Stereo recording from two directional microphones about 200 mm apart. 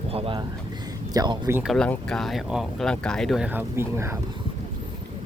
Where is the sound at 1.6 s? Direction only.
5° left (ahead or behind); by 4.2 s 15° right (ahead or behind).